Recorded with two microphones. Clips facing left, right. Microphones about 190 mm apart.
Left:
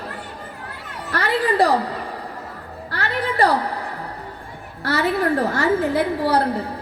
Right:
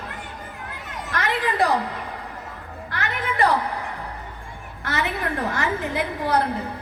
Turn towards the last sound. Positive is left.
turn(degrees=35)  # may be behind; listen again after turning